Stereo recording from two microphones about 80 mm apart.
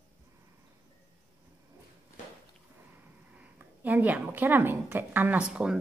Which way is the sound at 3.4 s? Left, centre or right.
Right.